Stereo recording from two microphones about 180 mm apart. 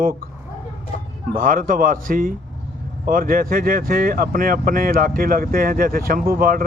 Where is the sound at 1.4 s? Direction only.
50° right (ahead or behind).